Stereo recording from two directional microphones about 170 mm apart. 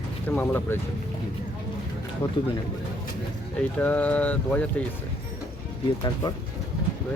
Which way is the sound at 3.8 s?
10° left (ahead or behind).